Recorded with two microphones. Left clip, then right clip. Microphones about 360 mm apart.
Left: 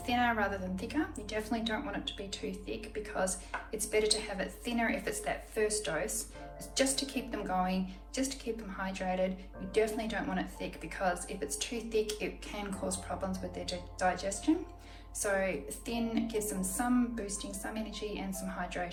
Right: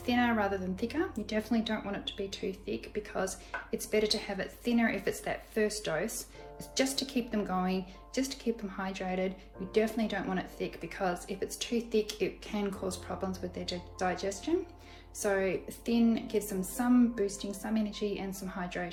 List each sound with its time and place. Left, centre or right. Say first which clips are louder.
0.0 s a woman's voice: right 1 dB; centre